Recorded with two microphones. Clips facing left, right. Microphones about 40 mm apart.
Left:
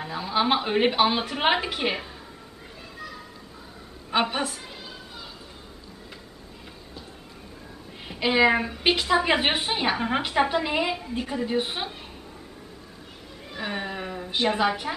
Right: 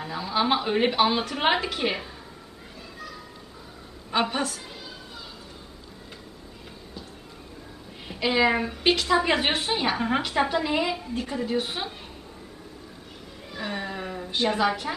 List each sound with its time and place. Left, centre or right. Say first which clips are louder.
0.0 s a woman's voice: left 1 dB; centre
4.1 s a woman's voice: left 1 dB; centre
8.1 s a woman's voice: left 2 dB; centre
13.5 s a sound: left 1 dB; centre
14.3 s a woman's voice: even; centre